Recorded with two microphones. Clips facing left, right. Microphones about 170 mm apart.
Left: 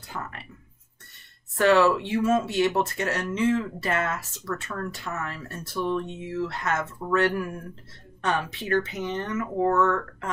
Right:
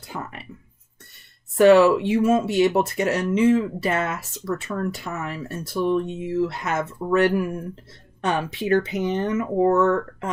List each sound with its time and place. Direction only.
0.1 s speech: 10° right (ahead or behind)
1.6 s speech: 15° right (ahead or behind)